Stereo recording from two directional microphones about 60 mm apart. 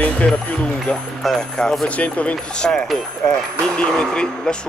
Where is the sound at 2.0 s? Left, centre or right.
Left.